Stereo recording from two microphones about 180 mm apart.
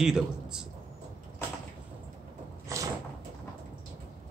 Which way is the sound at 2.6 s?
15° right (ahead or behind).